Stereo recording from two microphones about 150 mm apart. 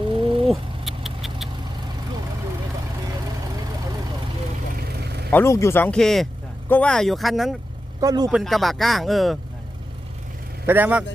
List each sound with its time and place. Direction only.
0.1 s bird: 35° right (ahead or behind)
0.4 s rodents: centre (ahead or behind)
4.8 s vehicle: 90° right
5.3 s speech: 15° left (ahead or behind); by 7.5 s centre (ahead or behind)
8.0 s speech: 25° right (ahead or behind)
8.3 s speech: centre (ahead or behind)
10.7 s speech: 10° right (ahead or behind)